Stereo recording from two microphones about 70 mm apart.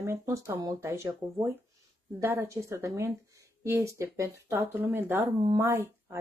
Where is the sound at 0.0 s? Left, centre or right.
Right.